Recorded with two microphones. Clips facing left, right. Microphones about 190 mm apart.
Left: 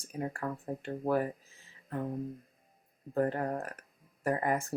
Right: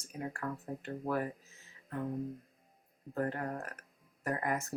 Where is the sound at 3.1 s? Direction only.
35° left (ahead or behind).